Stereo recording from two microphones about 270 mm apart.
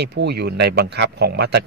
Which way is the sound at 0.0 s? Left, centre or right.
Right.